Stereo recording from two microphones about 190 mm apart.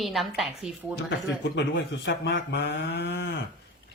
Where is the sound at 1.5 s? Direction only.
65° left (ahead or behind).